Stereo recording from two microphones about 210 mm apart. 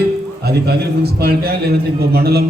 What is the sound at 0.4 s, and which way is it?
A man's voice, 50° right (ahead or behind).